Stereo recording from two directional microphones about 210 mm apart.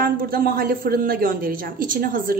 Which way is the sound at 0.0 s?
45° right (ahead or behind).